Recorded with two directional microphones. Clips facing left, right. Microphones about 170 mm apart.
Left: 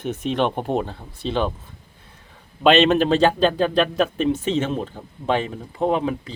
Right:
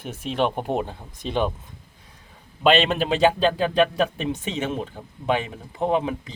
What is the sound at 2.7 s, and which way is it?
Speech, 10° right (ahead or behind).